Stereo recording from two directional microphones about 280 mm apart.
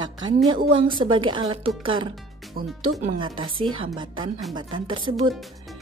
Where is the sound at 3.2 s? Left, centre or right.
Centre.